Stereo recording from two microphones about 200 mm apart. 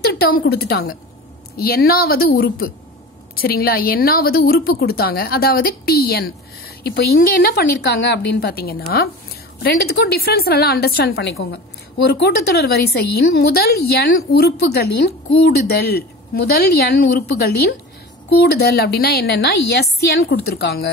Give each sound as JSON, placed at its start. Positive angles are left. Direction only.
{"t": 0.0, "sound": "a woman's voice", "side_deg": 55}